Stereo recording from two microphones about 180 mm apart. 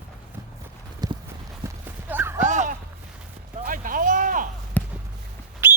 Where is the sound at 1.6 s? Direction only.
10° right (ahead or behind).